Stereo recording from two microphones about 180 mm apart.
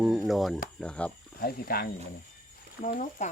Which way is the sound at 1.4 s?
55° left (ahead or behind).